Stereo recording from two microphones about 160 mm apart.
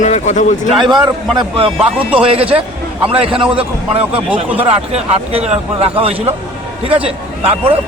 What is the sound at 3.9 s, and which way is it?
Speech, 10° right (ahead or behind).